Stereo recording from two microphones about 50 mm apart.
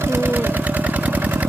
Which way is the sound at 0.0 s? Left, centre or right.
Right.